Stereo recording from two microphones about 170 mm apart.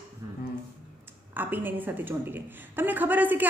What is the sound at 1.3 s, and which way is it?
A woman's voice, 10° right (ahead or behind).